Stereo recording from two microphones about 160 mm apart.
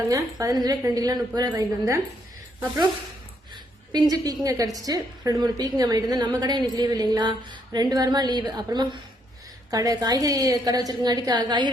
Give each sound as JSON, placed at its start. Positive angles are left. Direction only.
{"t": 0.1, "sound": "a woman's voice", "side_deg": -20}
{"t": 3.5, "sound": "a sound", "side_deg": -25}
{"t": 4.4, "sound": "a woman's voice", "side_deg": -20}